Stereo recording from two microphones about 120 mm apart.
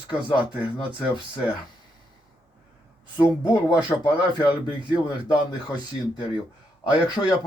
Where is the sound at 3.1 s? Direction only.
35° left (ahead or behind).